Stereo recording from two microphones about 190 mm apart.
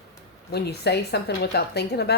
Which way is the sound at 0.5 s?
60° left (ahead or behind).